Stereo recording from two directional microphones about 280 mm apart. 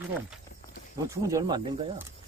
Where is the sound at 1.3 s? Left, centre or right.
Centre.